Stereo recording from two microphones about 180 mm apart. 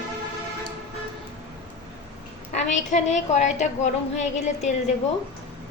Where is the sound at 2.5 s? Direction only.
40° left (ahead or behind).